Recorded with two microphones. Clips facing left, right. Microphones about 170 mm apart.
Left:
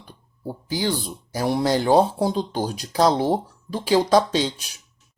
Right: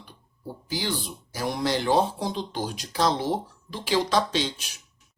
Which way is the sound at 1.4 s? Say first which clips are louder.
Left 6 dB; 40° left (ahead or behind).